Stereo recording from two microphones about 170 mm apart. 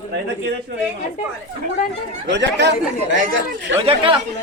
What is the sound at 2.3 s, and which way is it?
Speech, 90° right.